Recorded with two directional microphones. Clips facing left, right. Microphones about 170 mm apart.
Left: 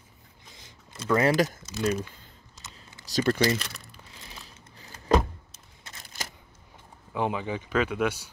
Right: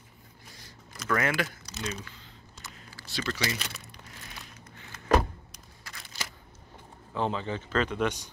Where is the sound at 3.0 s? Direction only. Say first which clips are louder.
Left 9 dB; 45° left (ahead or behind).